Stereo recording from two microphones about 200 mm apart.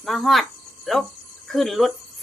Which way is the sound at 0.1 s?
Centre (ahead or behind).